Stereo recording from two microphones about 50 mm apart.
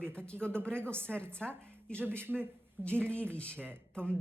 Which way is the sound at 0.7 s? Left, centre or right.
Right.